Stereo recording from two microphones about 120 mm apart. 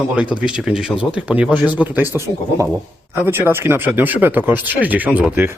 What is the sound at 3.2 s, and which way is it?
Speech, 20° right (ahead or behind).